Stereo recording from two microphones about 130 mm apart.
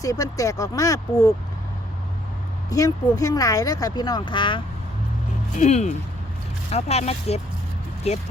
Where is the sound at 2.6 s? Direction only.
25° left (ahead or behind).